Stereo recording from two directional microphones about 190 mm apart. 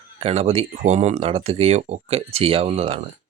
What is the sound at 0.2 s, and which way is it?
Speech, 30° right (ahead or behind).